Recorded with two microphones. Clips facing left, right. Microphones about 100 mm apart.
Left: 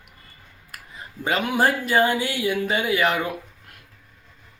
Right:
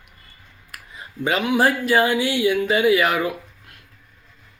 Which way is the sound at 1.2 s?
Centre (ahead or behind).